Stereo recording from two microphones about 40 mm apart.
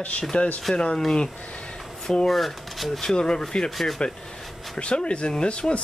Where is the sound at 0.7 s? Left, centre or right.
Centre.